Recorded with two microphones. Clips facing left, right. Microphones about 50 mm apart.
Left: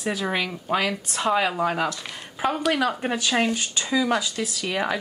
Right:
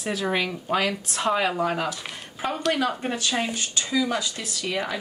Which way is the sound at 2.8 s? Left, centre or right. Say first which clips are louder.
Left 2 dB; left.